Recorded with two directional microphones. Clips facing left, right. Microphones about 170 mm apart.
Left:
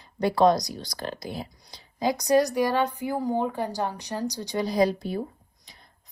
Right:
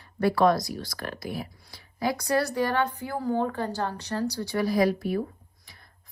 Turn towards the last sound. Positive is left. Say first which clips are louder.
# even
turn(degrees=20)  # may be behind; listen again after turning